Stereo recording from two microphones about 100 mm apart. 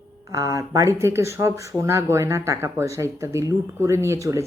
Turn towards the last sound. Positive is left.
turn(degrees=-30)  # may be behind; listen again after turning